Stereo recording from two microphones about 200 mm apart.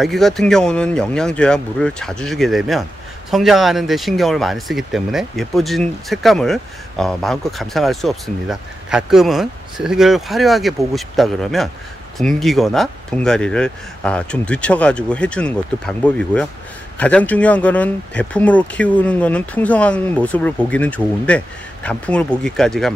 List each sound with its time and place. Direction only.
0.0 s speech: centre (ahead or behind)